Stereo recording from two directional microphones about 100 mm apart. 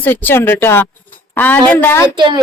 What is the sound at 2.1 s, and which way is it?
Speech, 50° right (ahead or behind).